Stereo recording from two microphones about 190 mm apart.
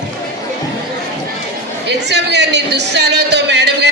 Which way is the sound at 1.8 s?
65° right (ahead or behind).